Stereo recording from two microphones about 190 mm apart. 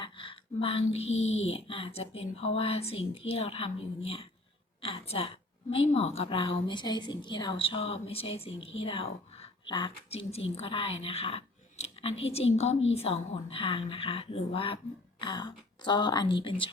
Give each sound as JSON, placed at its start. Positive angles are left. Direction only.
{"t": 0.0, "sound": "a woman's voice", "side_deg": 25}